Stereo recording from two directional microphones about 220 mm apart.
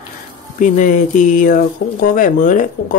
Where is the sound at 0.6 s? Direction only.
35° left (ahead or behind).